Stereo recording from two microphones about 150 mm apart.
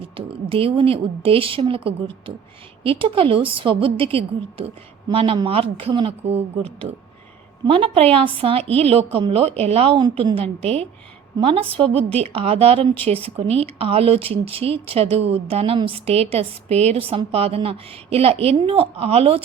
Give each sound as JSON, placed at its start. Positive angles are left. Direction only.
{"t": 0.0, "sound": "speech", "side_deg": -40}